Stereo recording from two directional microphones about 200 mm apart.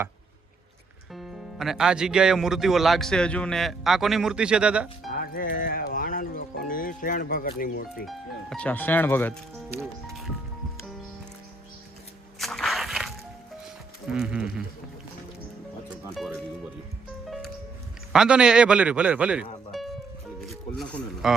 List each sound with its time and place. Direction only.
1.1 s speech: centre (ahead or behind)
5.2 s music: 45° left (ahead or behind)
5.5 s speech: 45° left (ahead or behind)
8.0 s speech: centre (ahead or behind)
12.4 s a sound: centre (ahead or behind)
14.1 s speech: 5° right (ahead or behind)
16.1 s speech: centre (ahead or behind)
17.2 s music: centre (ahead or behind)
18.1 s speech: 5° right (ahead or behind)